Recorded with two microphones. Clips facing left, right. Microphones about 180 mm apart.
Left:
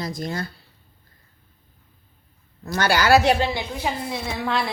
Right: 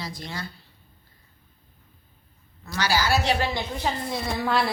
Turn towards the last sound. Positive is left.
turn(degrees=0)  # may be behind; listen again after turning